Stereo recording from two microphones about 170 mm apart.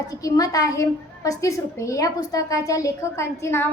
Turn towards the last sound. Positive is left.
turn(degrees=15)  # may be behind; listen again after turning